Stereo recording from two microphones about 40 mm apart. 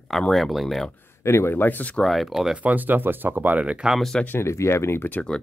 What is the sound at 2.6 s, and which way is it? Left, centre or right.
Speech, right.